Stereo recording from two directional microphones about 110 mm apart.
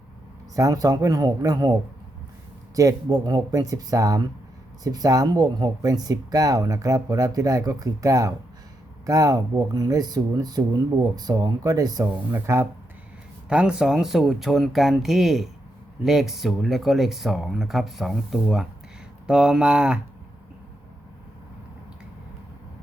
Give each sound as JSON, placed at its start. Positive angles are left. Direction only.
{"t": 0.5, "sound": "speech", "side_deg": -30}
{"t": 12.3, "sound": "speech", "side_deg": -25}
{"t": 13.5, "sound": "speech", "side_deg": -10}